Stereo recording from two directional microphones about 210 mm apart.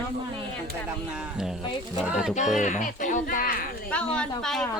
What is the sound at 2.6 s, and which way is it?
Speech, 35° left (ahead or behind).